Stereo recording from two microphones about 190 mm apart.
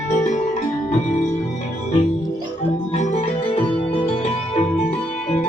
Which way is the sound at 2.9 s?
35° left (ahead or behind).